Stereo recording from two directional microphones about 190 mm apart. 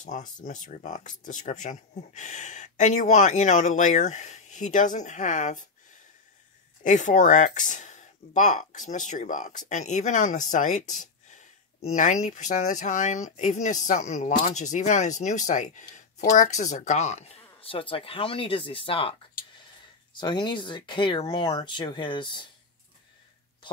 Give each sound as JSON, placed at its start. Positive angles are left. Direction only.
{"t": 0.0, "sound": "speech", "side_deg": 40}
{"t": 6.8, "sound": "speech", "side_deg": 40}
{"t": 20.2, "sound": "speech", "side_deg": 25}